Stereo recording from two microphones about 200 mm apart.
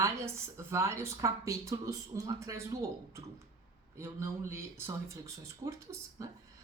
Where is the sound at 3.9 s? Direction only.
15° right (ahead or behind).